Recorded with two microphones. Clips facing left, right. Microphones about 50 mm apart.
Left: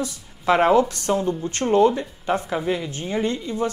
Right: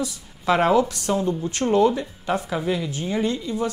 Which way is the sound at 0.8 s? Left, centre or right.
Left.